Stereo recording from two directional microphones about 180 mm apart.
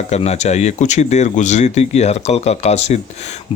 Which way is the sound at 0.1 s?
35° left (ahead or behind).